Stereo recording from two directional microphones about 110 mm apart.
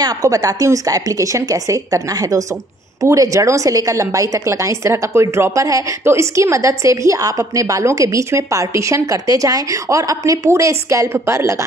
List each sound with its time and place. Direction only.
0.0 s a woman's voice: 35° right (ahead or behind)